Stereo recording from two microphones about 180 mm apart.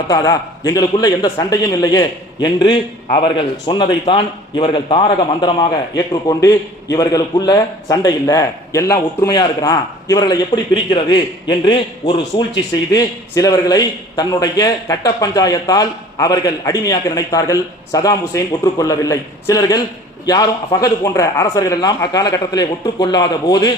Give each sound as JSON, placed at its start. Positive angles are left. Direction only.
{"t": 0.1, "sound": "a man's voice", "side_deg": 20}